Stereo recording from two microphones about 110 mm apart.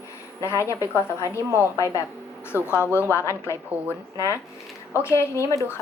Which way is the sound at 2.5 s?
20° left (ahead or behind).